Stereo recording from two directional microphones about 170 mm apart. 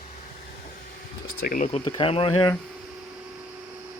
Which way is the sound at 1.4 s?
55° left (ahead or behind).